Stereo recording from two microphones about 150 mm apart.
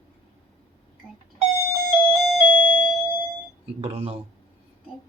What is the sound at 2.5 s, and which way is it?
Doorbell, 10° right (ahead or behind).